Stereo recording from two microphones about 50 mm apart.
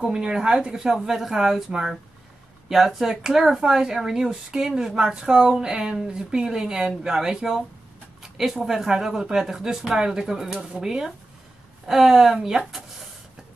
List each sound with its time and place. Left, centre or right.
0.0 s speech: centre